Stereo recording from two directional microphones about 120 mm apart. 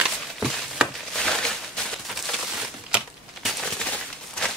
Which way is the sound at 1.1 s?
5° left (ahead or behind).